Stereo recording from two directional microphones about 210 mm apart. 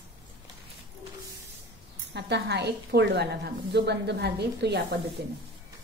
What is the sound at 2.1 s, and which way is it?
A woman's voice, 55° right (ahead or behind).